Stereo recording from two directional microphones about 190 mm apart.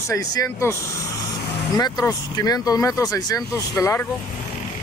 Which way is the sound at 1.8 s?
20° left (ahead or behind).